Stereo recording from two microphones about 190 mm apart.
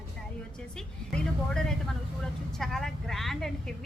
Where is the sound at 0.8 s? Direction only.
5° left (ahead or behind).